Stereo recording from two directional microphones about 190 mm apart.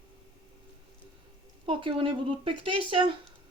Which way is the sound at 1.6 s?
25° right (ahead or behind).